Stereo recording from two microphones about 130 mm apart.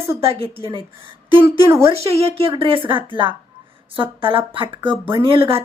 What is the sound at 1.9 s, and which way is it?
Speech, 50° right (ahead or behind).